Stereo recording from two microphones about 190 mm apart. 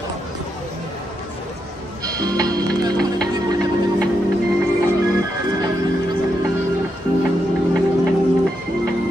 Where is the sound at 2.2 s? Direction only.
20° right (ahead or behind).